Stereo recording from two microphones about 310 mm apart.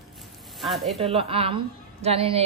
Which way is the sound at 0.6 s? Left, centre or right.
Centre.